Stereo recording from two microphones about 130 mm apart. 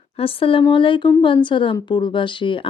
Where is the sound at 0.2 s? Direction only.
45° left (ahead or behind).